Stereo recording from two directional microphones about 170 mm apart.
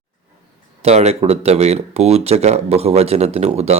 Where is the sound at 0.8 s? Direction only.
40° right (ahead or behind).